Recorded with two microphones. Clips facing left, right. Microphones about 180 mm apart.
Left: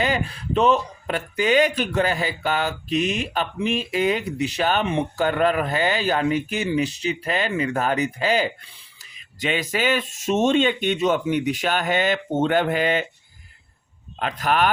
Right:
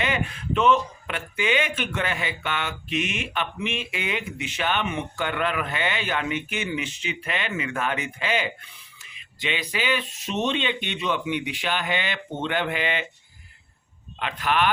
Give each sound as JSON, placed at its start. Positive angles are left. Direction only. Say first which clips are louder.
{"t": 0.0, "sound": "speech", "louder": "left 4 dB", "side_deg": 35}
{"t": 14.2, "sound": "speech", "louder": "left 3 dB", "side_deg": 40}